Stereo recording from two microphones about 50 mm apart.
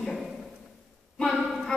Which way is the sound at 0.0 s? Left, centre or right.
Centre.